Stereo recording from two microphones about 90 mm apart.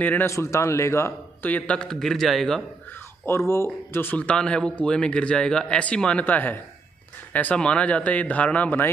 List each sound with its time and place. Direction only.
0.0 s speech: 20° left (ahead or behind)
0.3 s a man's voice: 35° left (ahead or behind)
1.5 s speech: 10° left (ahead or behind)
3.3 s speech: 30° left (ahead or behind)
4.2 s speech: 10° left (ahead or behind)